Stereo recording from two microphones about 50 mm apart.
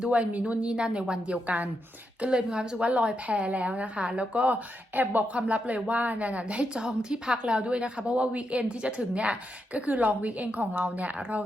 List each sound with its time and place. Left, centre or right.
0.0 s a woman's voice: right
4.9 s speech: right
5.5 s a woman's voice: right
6.7 s a woman's voice: centre; by 11.4 s right